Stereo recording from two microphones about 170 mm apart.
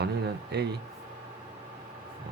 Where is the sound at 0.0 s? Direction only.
75° right (ahead or behind).